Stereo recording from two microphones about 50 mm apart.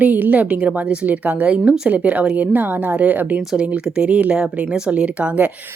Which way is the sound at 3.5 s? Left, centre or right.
Right.